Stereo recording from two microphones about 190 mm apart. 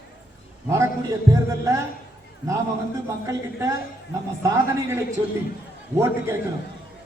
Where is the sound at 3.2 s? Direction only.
15° right (ahead or behind).